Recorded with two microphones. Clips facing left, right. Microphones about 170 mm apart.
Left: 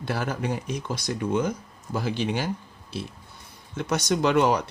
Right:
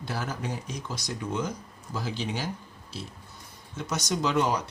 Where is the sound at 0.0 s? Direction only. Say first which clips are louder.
Left 5 dB; 60° left (ahead or behind).